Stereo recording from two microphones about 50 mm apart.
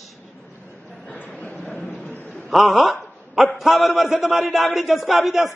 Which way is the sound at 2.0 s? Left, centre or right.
Left.